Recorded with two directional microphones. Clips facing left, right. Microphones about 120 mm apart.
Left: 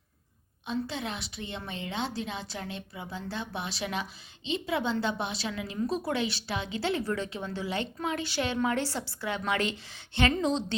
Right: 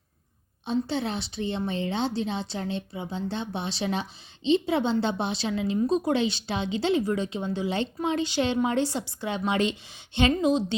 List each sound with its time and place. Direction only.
0.6 s a woman's voice: 30° right (ahead or behind); by 10.8 s 15° right (ahead or behind)